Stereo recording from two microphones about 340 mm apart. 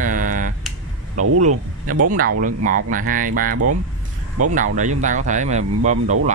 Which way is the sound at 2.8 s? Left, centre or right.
Right.